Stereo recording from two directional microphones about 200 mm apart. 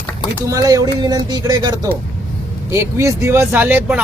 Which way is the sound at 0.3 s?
15° right (ahead or behind).